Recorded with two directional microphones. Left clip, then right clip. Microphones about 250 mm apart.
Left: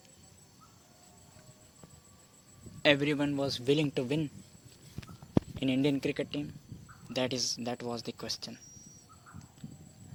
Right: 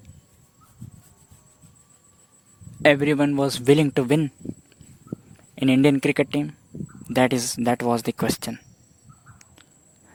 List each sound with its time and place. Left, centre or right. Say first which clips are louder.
2.8 s speech: right 9 dB; right
5.5 s speech: right 15 dB; right